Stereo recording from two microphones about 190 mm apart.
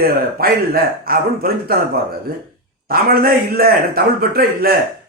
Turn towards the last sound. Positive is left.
turn(degrees=-50)  # may be behind; listen again after turning